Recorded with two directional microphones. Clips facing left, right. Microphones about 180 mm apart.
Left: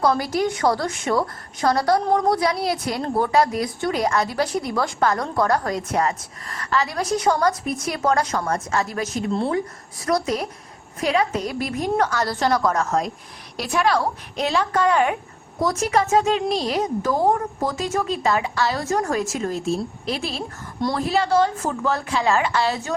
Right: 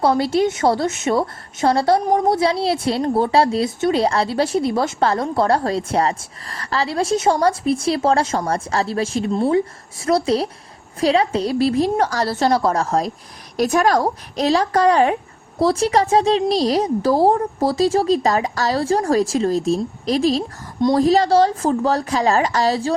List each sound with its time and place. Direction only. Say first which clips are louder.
0.0 s a woman's voice: right 4 dB; 25° right (ahead or behind)
13.6 s speech: right 5 dB; 45° right (ahead or behind)